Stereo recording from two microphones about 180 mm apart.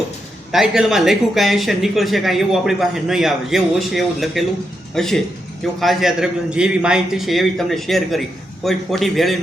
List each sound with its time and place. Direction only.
0.5 s speech: centre (ahead or behind)